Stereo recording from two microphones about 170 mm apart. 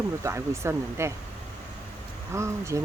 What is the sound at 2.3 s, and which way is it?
Speech, 15° right (ahead or behind).